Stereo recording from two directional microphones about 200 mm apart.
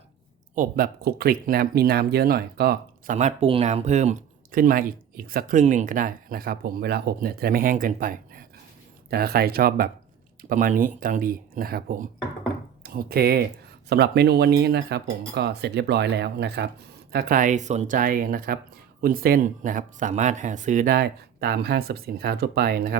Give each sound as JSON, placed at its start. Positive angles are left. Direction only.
{"t": 0.5, "sound": "speech", "side_deg": -45}
{"t": 3.2, "sound": "speech", "side_deg": -30}